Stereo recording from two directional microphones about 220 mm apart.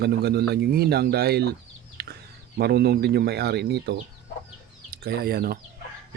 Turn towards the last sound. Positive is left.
turn(degrees=-45)  # may be behind; listen again after turning